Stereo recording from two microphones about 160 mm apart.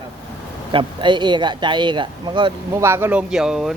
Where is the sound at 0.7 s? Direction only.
30° right (ahead or behind).